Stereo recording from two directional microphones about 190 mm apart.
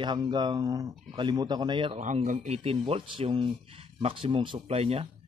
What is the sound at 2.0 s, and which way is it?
Speech, 40° right (ahead or behind).